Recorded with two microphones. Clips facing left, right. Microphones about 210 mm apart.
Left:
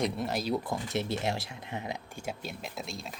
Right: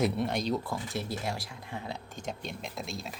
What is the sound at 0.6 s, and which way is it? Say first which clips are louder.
Speech: left 3 dB; 20° left (ahead or behind).